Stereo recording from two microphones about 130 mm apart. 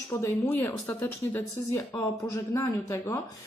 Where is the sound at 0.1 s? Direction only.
15° left (ahead or behind).